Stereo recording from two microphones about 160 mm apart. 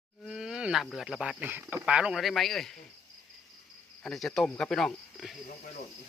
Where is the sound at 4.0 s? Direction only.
5° left (ahead or behind).